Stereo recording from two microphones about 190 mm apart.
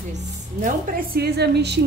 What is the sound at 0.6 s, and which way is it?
A woman's voice, 45° right (ahead or behind).